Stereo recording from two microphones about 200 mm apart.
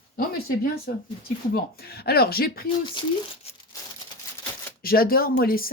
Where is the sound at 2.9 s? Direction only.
25° left (ahead or behind).